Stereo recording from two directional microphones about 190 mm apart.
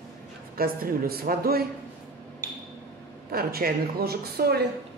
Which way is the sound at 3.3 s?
50° right (ahead or behind).